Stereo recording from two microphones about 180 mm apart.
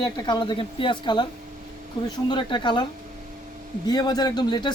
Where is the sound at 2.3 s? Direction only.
25° left (ahead or behind).